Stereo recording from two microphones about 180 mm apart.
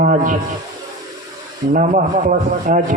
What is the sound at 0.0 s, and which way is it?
Speech, 45° right (ahead or behind).